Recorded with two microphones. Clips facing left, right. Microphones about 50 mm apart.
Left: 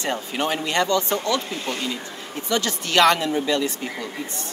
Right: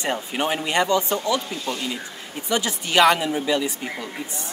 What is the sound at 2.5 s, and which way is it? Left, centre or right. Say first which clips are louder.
Speech: even; centre.